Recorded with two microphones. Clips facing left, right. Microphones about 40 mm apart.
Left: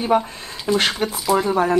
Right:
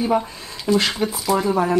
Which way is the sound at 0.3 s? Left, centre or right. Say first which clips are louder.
Right 1 dB; left.